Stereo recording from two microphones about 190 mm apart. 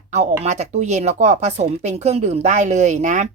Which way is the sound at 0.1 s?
35° right (ahead or behind).